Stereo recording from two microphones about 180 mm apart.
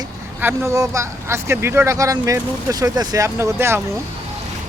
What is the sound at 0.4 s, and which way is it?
Speech, 15° right (ahead or behind).